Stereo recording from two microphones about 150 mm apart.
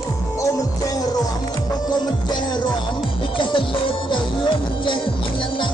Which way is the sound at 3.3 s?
35° left (ahead or behind).